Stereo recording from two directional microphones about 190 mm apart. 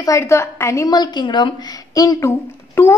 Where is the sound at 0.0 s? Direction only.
15° left (ahead or behind).